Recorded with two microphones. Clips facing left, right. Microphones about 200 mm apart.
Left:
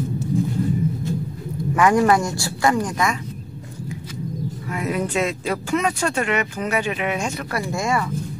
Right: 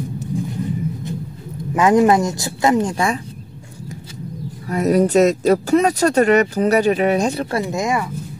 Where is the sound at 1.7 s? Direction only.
20° right (ahead or behind).